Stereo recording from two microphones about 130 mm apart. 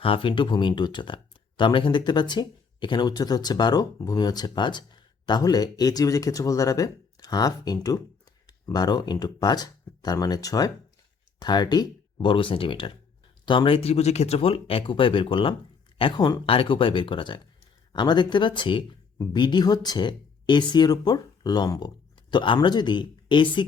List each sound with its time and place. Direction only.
0.0 s speech: 40° left (ahead or behind)